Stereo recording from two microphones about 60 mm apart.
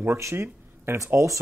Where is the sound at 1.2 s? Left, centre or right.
Right.